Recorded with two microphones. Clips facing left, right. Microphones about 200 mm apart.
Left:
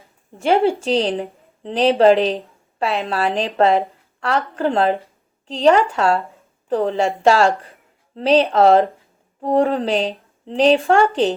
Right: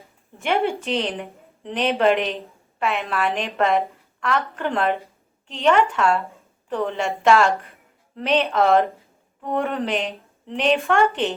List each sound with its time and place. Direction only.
0.3 s a woman's voice: 30° left (ahead or behind)